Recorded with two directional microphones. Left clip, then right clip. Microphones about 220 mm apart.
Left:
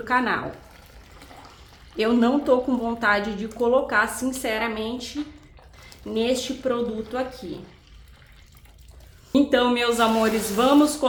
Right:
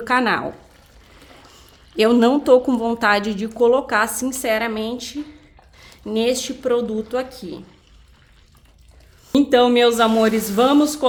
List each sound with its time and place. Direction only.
0.0 s a woman's voice: 50° right (ahead or behind)
2.0 s a woman's voice: 50° right (ahead or behind)
9.3 s a woman's voice: 45° right (ahead or behind)